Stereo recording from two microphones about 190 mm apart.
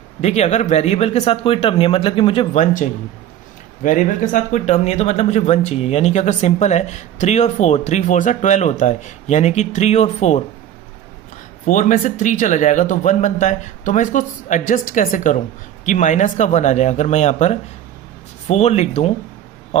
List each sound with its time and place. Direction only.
0.2 s speech: 35° left (ahead or behind)
11.6 s speech: 45° left (ahead or behind)
19.7 s a sound: 35° left (ahead or behind)